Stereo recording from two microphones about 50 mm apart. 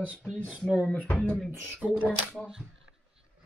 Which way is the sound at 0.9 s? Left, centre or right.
Left.